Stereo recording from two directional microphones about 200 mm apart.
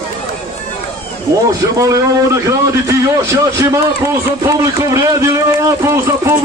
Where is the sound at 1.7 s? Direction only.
15° right (ahead or behind).